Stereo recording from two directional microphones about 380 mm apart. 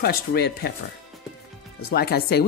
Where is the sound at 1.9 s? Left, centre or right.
Left.